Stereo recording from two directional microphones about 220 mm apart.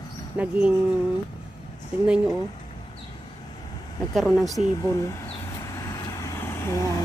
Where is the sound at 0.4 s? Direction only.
5° right (ahead or behind).